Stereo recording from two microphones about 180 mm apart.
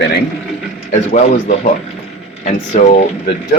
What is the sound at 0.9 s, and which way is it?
Speech, 40° left (ahead or behind).